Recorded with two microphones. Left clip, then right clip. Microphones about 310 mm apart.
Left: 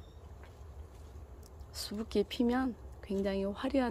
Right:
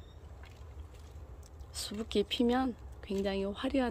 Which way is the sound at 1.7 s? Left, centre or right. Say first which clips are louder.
Right 1 dB; centre.